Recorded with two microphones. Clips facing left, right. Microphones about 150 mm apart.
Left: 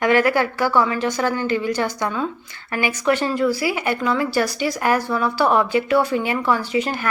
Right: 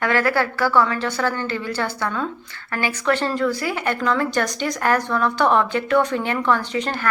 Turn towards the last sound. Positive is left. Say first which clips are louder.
# left 2 dB
turn(degrees=10)  # may be behind; listen again after turning